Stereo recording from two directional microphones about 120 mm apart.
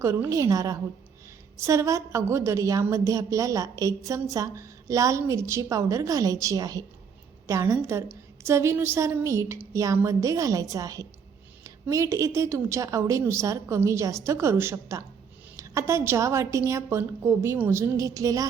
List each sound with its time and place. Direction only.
0.0 s a woman's voice: 25° right (ahead or behind)